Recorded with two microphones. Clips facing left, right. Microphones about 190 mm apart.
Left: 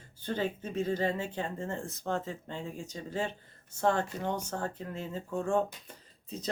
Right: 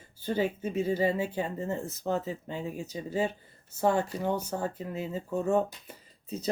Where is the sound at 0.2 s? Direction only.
10° right (ahead or behind).